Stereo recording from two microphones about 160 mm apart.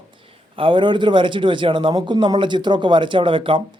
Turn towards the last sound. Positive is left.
turn(degrees=-30)  # may be behind; listen again after turning